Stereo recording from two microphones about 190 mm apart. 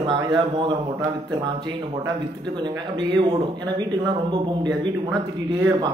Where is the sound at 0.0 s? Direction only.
25° right (ahead or behind).